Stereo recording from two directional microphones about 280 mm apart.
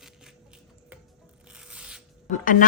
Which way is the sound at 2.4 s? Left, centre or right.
Left.